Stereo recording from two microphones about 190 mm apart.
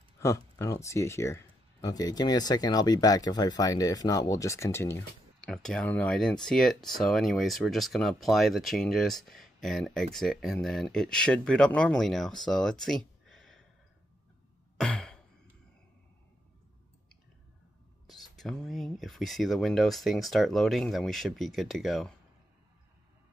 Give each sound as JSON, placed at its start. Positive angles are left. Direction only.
{"t": 0.2, "sound": "speech", "side_deg": 15}
{"t": 14.8, "sound": "sigh", "side_deg": 5}
{"t": 18.0, "sound": "speech", "side_deg": 0}